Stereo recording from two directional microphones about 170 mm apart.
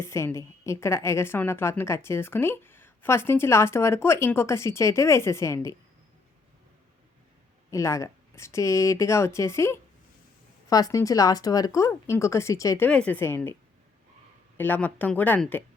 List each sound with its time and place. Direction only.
0.0 s a woman's voice: 15° left (ahead or behind)
7.7 s a woman's voice: 15° left (ahead or behind)
14.6 s a woman's voice: 10° left (ahead or behind)